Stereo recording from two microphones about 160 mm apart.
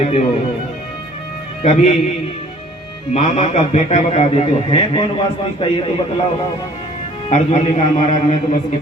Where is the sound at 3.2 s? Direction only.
40° left (ahead or behind).